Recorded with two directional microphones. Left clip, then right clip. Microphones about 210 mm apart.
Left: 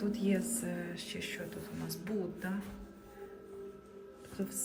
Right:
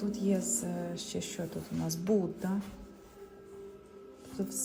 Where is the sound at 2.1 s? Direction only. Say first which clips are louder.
Right 9 dB; 30° right (ahead or behind).